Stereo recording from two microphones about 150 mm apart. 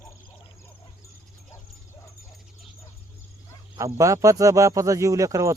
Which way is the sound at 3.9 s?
20° right (ahead or behind).